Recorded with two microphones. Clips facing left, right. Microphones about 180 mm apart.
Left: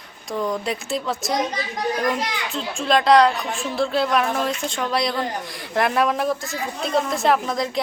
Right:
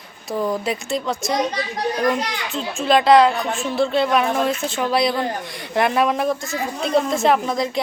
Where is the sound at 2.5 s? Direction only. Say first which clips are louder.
Right 3 dB; centre (ahead or behind).